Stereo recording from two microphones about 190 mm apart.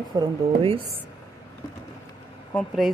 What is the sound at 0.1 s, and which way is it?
Speech, 20° right (ahead or behind).